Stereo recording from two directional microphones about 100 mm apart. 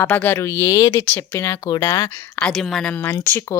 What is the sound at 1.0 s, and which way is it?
Speech, 20° left (ahead or behind).